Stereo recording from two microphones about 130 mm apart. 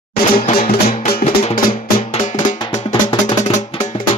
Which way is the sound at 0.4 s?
60° left (ahead or behind).